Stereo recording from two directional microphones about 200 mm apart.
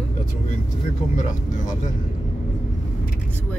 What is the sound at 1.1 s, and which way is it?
Speech, 40° left (ahead or behind).